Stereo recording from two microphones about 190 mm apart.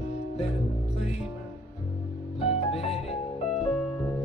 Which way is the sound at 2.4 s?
35° left (ahead or behind).